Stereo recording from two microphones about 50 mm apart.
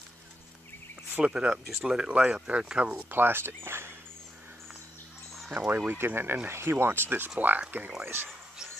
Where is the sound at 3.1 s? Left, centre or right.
Right.